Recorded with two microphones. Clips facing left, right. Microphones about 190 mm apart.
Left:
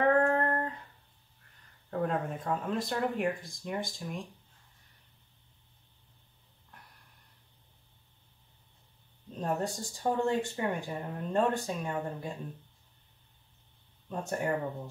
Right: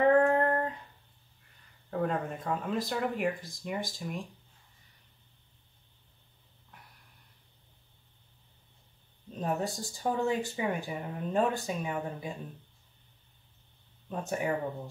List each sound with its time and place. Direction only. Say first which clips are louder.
0.2 s a sound: right 2 dB; 15° right (ahead or behind)
1.9 s speech: even; centre (ahead or behind)
9.4 s speech: even; centre (ahead or behind)
14.0 s speech: even; centre (ahead or behind)